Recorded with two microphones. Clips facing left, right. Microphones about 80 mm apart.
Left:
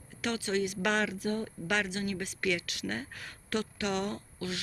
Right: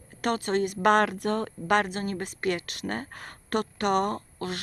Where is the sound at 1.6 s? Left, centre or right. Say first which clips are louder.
Right 7 dB; right.